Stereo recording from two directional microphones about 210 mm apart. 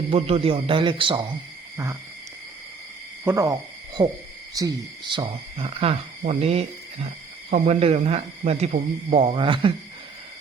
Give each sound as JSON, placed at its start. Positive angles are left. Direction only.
{"t": 0.1, "sound": "speech", "side_deg": -25}
{"t": 1.7, "sound": "owl", "side_deg": -15}
{"t": 3.2, "sound": "hoot", "side_deg": -15}
{"t": 4.6, "sound": "cricket", "side_deg": -15}
{"t": 5.1, "sound": "speech", "side_deg": -25}